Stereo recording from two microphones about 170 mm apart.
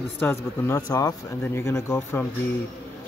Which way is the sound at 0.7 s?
20° left (ahead or behind).